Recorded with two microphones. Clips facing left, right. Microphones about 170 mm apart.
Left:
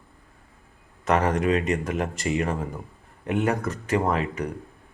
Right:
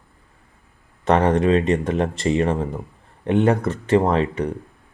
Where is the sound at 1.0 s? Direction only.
30° right (ahead or behind).